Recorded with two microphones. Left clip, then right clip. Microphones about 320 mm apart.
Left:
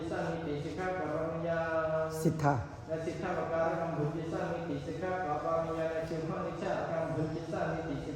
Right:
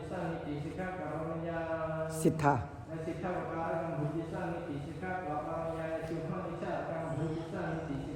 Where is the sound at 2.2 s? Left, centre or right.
Right.